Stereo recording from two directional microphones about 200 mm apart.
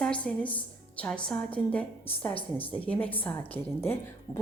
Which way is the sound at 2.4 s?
25° left (ahead or behind).